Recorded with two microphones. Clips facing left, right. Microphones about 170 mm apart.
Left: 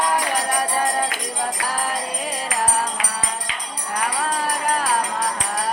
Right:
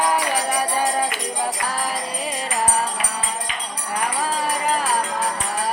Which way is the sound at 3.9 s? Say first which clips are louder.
Even; centre (ahead or behind).